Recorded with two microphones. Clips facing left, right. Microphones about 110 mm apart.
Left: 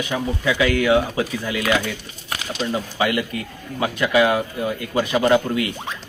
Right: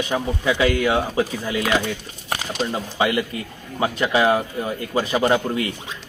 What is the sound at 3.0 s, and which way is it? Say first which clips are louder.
Speech: right 2 dB; 25° right (ahead or behind).